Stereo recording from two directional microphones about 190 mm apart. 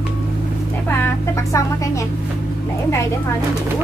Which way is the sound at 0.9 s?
10° left (ahead or behind).